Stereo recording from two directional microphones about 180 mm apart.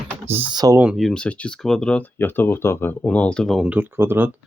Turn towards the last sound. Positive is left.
turn(degrees=-10)  # may be behind; listen again after turning